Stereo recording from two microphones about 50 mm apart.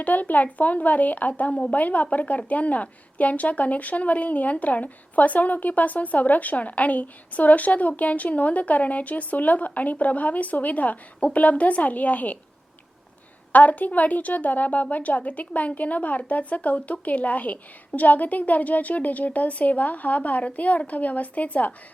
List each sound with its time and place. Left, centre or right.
0.0 s a woman's voice: left
13.5 s a woman's voice: left